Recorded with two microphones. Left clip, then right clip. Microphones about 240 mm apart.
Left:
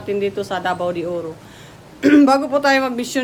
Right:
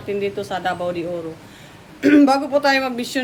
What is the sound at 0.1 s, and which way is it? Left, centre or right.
Speech, centre.